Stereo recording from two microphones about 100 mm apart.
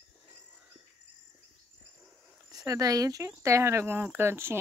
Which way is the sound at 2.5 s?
40° right (ahead or behind).